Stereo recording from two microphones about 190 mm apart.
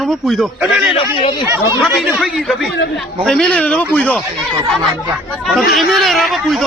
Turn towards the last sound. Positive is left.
turn(degrees=0)  # may be behind; listen again after turning